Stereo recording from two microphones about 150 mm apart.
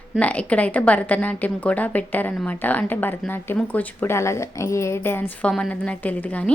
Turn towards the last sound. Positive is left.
turn(degrees=10)  # may be behind; listen again after turning